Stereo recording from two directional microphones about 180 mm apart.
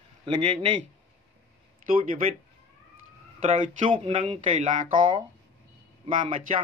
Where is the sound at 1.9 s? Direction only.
50° right (ahead or behind).